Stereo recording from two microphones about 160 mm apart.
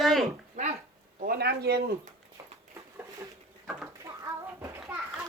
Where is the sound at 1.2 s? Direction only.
75° right (ahead or behind).